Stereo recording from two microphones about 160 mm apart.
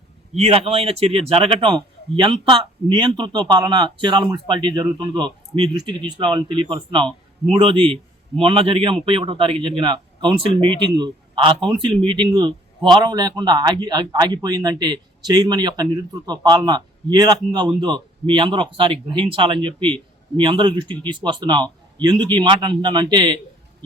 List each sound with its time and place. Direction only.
0.3 s speech: 40° right (ahead or behind)